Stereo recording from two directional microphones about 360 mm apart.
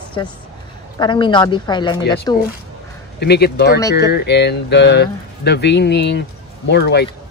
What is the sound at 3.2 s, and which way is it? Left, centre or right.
Speech, left.